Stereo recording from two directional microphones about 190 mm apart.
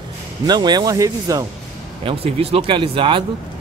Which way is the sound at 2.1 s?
30° right (ahead or behind).